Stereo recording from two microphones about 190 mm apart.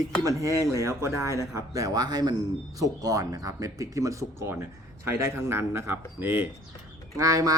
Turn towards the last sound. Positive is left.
turn(degrees=-15)  # may be behind; listen again after turning